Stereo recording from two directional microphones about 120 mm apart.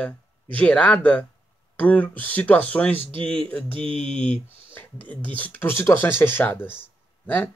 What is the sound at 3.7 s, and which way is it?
Speech, 45° right (ahead or behind).